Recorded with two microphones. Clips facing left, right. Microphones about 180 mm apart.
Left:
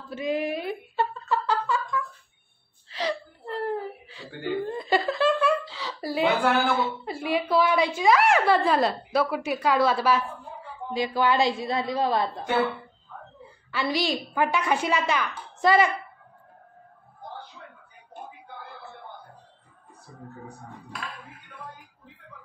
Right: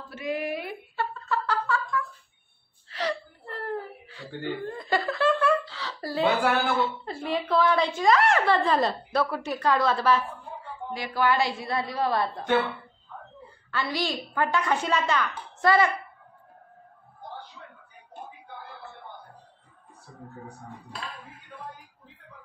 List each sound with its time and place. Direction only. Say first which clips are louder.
0.1 s a sound: left 3 dB; 20° left (ahead or behind)
2.9 s whimper: left 1 dB; 15° left (ahead or behind)
3.6 s a sound: left 2 dB; 15° left (ahead or behind)
7.1 s a woman's voice: left 2 dB; 10° left (ahead or behind)
10.9 s a woman's voice: left 2 dB; 20° left (ahead or behind)
13.7 s a woman's voice: left 3 dB; 10° left (ahead or behind)